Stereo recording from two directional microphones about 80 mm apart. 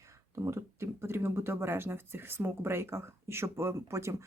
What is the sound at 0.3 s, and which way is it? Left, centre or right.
Speech, right.